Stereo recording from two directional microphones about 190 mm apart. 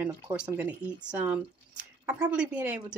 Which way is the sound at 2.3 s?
5° right (ahead or behind).